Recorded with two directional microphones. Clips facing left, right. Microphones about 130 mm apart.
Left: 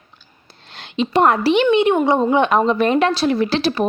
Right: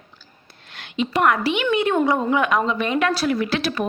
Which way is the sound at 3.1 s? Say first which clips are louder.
Left 4 dB; 25° left (ahead or behind).